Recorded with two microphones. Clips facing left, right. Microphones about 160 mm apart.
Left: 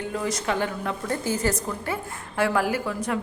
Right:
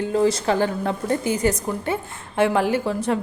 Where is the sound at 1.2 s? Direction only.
20° right (ahead or behind).